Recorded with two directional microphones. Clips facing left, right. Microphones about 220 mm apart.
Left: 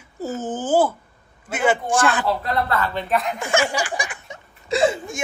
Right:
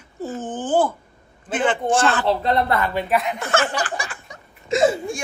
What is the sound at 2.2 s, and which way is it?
Speech, 25° right (ahead or behind).